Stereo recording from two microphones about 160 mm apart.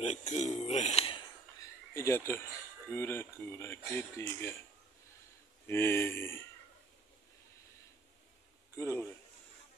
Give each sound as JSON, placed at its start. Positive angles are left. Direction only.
{"t": 0.0, "sound": "a sound", "side_deg": 45}
{"t": 2.0, "sound": "speech", "side_deg": 15}
{"t": 5.7, "sound": "speech", "side_deg": 15}
{"t": 8.7, "sound": "speech", "side_deg": 15}